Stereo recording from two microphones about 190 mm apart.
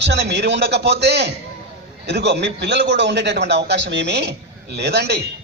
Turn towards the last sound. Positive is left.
turn(degrees=-60)  # may be behind; listen again after turning